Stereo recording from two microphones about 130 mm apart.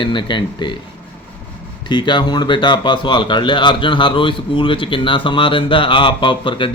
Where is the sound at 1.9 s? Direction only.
35° left (ahead or behind).